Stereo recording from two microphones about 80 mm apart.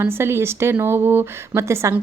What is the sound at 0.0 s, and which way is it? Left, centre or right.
A woman's voice, right.